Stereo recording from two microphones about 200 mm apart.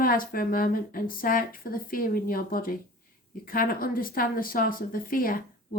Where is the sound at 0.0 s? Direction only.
45° left (ahead or behind).